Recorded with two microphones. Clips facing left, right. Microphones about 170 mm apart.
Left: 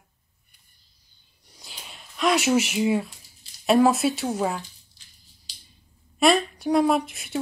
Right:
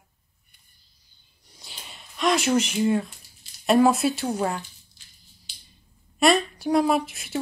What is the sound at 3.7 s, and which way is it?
Speech, centre (ahead or behind).